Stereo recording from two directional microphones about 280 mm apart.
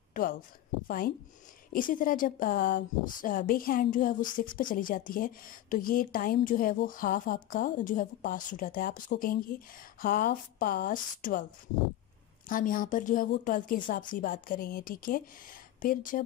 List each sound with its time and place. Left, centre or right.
0.1 s a woman's voice: left
12.4 s a woman's voice: left